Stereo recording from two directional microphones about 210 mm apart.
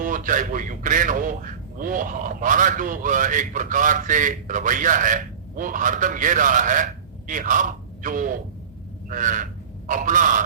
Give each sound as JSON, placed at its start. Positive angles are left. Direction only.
{"t": 0.0, "sound": "a man's voice", "side_deg": -40}
{"t": 9.0, "sound": "goose", "side_deg": -40}